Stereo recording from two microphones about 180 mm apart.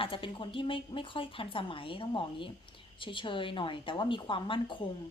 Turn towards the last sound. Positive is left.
turn(degrees=25)  # may be behind; listen again after turning